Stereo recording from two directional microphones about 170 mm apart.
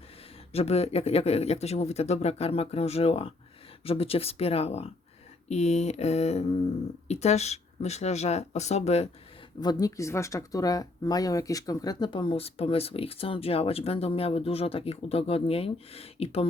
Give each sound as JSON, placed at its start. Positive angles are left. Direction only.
{"t": 0.5, "sound": "speech", "side_deg": 35}
{"t": 9.6, "sound": "speech", "side_deg": 25}